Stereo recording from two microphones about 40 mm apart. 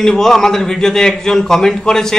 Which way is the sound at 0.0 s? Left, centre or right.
Centre.